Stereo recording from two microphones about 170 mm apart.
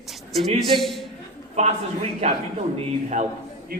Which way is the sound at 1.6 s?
35° right (ahead or behind).